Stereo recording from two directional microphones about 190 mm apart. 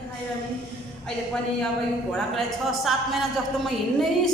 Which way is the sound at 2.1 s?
Centre (ahead or behind).